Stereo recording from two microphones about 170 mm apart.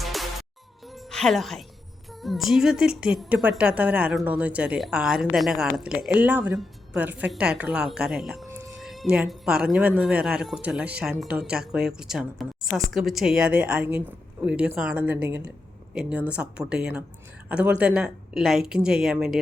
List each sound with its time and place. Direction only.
0.0 s music: centre (ahead or behind)
2.0 s a woman's voice: centre (ahead or behind)
8.4 s music: 15° right (ahead or behind)
8.8 s a woman's voice: centre (ahead or behind)